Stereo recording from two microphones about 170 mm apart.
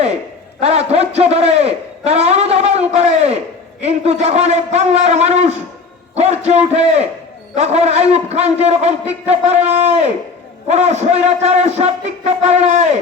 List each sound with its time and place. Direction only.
0.6 s speech: 40° right (ahead or behind)